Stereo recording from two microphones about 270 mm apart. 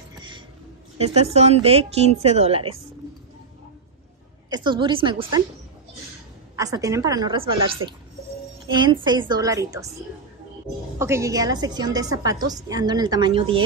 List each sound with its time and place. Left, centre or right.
0.9 s a woman's voice: right
4.5 s a woman's voice: centre
6.5 s a woman's voice: centre
11.0 s a woman's voice: centre